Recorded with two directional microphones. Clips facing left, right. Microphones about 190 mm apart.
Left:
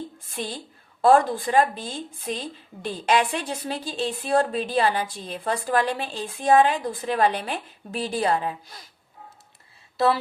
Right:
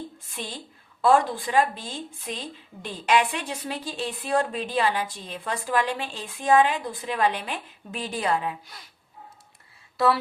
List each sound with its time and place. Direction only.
0.4 s speech: 40° left (ahead or behind)